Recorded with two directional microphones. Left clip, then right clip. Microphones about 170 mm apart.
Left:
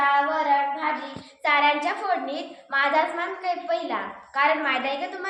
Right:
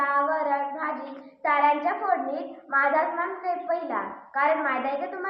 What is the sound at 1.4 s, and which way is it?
A woman's voice, 35° left (ahead or behind).